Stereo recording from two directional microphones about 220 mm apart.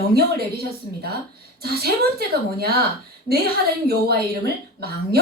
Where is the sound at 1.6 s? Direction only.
45° right (ahead or behind).